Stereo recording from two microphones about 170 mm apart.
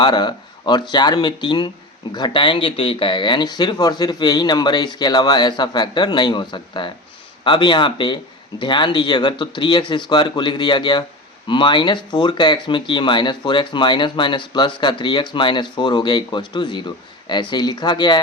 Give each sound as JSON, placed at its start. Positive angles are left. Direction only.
{"t": 0.0, "sound": "speech", "side_deg": 25}